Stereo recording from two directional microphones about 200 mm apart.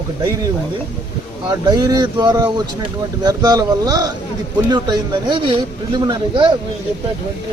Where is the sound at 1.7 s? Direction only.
20° right (ahead or behind).